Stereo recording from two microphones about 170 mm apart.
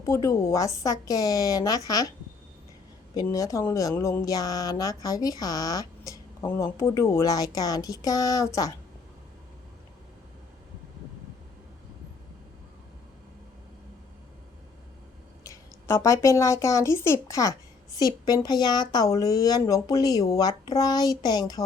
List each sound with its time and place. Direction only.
0.0 s speech: 15° left (ahead or behind)
3.2 s speech: 20° left (ahead or behind)
15.4 s speech: 15° left (ahead or behind)